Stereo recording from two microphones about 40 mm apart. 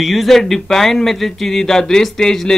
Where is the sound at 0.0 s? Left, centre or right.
Centre.